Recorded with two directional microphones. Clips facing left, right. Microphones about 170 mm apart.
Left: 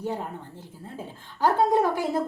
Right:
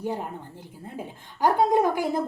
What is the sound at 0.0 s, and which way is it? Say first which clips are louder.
A woman's voice: right 1 dB; 10° right (ahead or behind).